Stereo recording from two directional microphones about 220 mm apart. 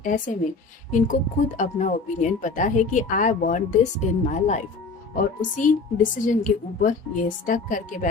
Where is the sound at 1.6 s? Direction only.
35° left (ahead or behind).